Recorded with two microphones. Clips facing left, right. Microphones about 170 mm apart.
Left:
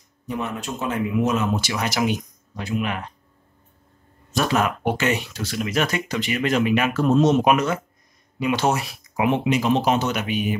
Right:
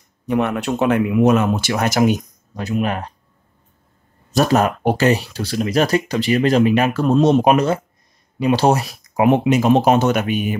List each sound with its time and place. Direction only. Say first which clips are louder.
0.3 s speech: right 9 dB; 65° right (ahead or behind); by 3.1 s 40° right (ahead or behind)
4.3 s speech: right 6 dB; 40° right (ahead or behind)